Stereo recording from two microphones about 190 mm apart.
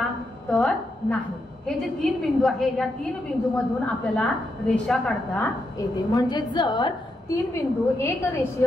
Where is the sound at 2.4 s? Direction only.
Centre (ahead or behind).